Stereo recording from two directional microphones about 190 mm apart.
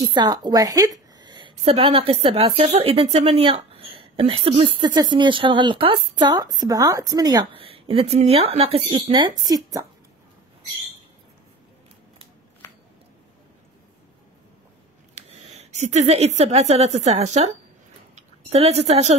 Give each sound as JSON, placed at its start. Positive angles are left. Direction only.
{"t": 0.0, "sound": "a woman's voice", "side_deg": -25}
{"t": 15.1, "sound": "a woman's voice", "side_deg": -35}